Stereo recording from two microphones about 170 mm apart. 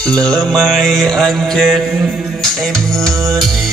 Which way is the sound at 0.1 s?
5° left (ahead or behind).